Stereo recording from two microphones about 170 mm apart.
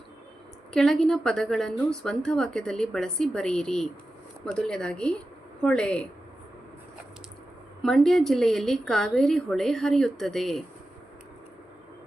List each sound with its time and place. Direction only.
0.7 s a woman's voice: 5° left (ahead or behind)
7.8 s a woman's voice: 5° left (ahead or behind)